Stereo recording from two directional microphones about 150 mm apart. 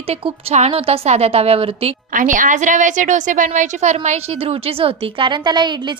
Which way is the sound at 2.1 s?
60° right (ahead or behind).